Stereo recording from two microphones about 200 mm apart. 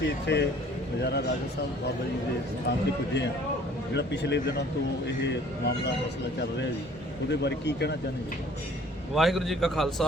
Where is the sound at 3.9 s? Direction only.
60° left (ahead or behind).